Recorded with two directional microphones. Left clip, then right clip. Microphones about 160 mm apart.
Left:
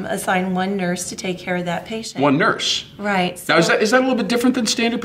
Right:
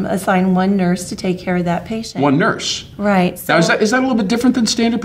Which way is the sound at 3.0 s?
40° right (ahead or behind).